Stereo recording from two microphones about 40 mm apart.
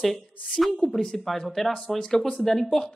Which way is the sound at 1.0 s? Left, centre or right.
Centre.